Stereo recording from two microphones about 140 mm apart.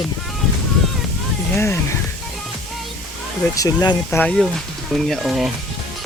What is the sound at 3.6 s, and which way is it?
Speech, 30° left (ahead or behind).